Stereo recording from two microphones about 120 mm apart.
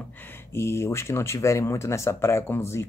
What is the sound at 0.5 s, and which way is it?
Speech, 20° left (ahead or behind).